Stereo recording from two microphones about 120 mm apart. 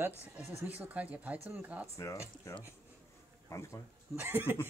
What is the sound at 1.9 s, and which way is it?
Speech, 25° left (ahead or behind).